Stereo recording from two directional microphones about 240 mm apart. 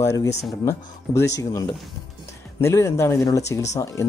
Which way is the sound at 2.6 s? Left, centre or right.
Centre.